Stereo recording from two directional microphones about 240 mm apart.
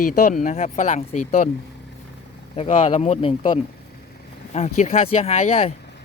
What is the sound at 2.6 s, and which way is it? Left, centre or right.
Speech, left.